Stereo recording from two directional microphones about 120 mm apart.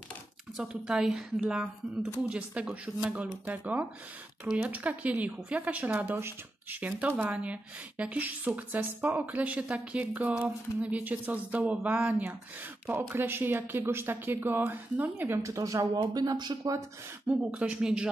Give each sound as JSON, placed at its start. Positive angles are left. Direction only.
{"t": 0.6, "sound": "a woman's voice", "side_deg": -5}
{"t": 4.5, "sound": "a woman's voice", "side_deg": -5}
{"t": 17.3, "sound": "speech", "side_deg": -10}